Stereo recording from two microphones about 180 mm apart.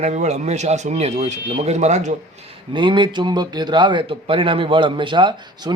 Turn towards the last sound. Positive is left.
turn(degrees=-25)  # may be behind; listen again after turning